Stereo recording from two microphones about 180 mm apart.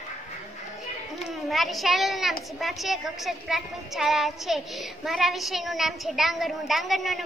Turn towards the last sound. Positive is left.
turn(degrees=0)  # may be behind; listen again after turning